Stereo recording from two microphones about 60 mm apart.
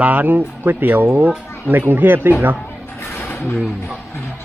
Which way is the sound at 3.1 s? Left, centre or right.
Left.